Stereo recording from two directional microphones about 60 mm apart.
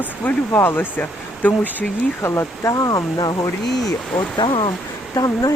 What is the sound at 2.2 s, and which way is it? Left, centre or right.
Speech, left.